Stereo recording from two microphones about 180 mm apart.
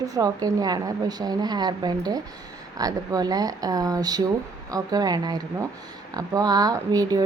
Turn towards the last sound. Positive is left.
turn(degrees=-20)  # may be behind; listen again after turning